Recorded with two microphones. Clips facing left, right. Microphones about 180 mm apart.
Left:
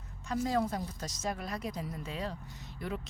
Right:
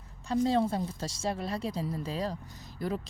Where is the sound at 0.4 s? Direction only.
30° right (ahead or behind).